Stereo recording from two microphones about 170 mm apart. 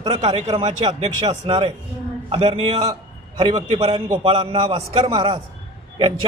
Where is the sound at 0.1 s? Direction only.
30° right (ahead or behind).